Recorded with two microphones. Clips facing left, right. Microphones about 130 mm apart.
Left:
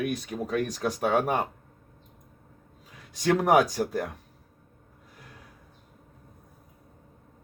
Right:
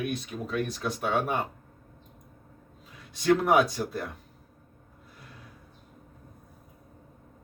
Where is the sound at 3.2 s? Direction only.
40° left (ahead or behind).